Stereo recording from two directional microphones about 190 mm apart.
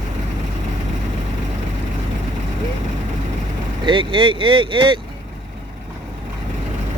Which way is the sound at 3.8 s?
25° right (ahead or behind).